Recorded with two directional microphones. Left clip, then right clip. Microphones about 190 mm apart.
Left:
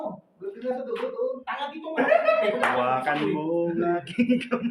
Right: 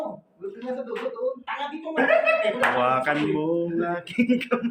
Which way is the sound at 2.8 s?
25° right (ahead or behind).